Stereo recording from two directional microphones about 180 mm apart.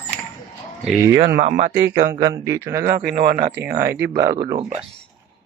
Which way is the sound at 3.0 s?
60° right (ahead or behind).